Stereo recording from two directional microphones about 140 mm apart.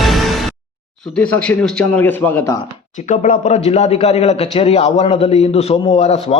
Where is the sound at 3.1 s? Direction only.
60° left (ahead or behind).